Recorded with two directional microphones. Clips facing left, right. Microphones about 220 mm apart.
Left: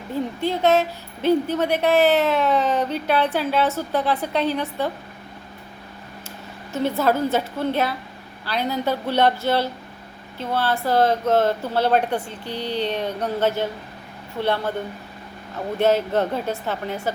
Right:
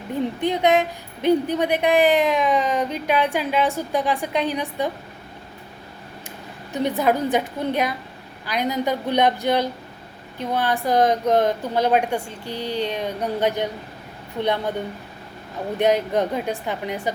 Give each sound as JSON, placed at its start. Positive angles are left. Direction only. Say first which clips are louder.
{"t": 0.4, "sound": "a woman's voice", "louder": "even", "side_deg": -15}
{"t": 6.7, "sound": "a woman's voice", "louder": "even", "side_deg": -15}
{"t": 15.8, "sound": "a woman's voice", "louder": "even", "side_deg": -15}